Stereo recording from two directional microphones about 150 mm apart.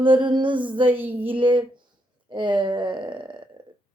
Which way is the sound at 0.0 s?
35° right (ahead or behind).